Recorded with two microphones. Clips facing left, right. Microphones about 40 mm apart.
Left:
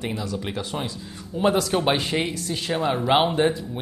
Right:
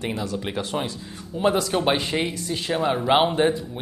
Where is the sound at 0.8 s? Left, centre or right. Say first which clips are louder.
Right 2 dB; centre.